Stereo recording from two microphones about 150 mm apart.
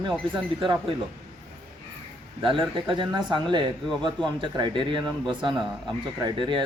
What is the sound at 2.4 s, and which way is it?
Speech, 35° right (ahead or behind).